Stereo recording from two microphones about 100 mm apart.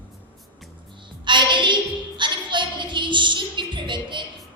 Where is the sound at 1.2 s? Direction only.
50° right (ahead or behind).